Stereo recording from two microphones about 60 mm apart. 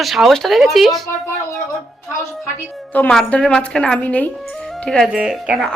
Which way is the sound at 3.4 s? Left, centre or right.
Centre.